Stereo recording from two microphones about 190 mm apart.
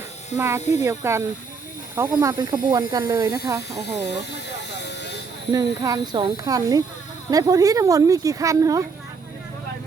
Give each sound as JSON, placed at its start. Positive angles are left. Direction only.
{"t": 0.3, "sound": "speech", "side_deg": -15}
{"t": 4.9, "sound": "a sound", "side_deg": 65}
{"t": 5.5, "sound": "speech", "side_deg": -20}